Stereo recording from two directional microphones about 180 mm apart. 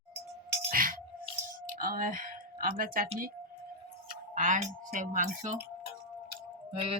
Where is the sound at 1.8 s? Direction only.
50° right (ahead or behind).